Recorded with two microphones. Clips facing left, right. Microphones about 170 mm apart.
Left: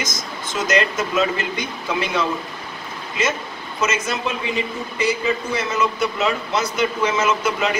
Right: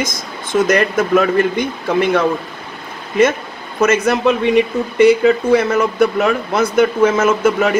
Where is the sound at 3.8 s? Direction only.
60° right (ahead or behind).